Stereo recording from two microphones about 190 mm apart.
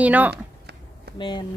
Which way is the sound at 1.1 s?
25° left (ahead or behind).